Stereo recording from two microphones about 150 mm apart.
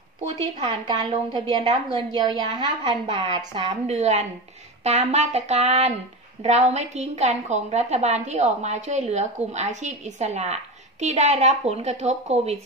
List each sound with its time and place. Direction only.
0.6 s a woman's voice: 30° right (ahead or behind)
3.8 s a woman's voice: 45° right (ahead or behind)